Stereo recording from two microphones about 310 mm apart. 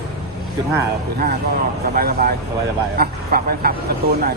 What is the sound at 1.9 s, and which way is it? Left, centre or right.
Speech, right.